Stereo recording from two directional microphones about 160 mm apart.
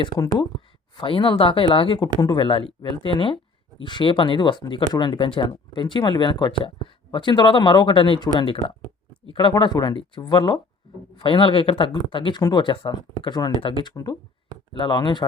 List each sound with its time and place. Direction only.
0.9 s speech: 30° left (ahead or behind)
10.8 s a sound: 30° left (ahead or behind)
11.2 s speech: 30° left (ahead or behind)